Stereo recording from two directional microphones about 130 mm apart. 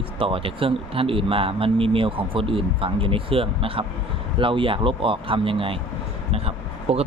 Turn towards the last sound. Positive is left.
turn(degrees=-50)  # may be behind; listen again after turning